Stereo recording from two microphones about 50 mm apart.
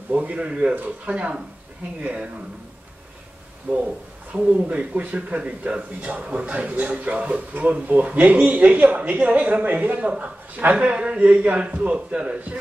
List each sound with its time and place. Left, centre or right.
0.1 s speech: right
4.3 s a man's voice: right